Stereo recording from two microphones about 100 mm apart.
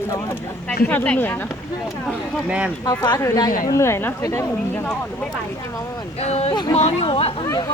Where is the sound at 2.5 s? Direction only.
10° right (ahead or behind).